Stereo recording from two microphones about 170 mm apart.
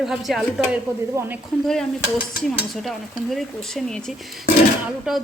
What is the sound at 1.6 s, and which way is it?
Cutlery, 5° left (ahead or behind).